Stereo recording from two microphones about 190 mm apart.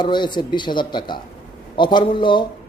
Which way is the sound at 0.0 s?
25° left (ahead or behind).